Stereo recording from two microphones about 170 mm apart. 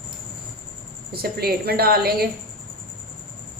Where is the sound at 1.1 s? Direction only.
65° right (ahead or behind).